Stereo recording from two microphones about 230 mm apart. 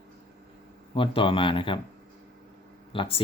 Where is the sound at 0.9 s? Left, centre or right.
Left.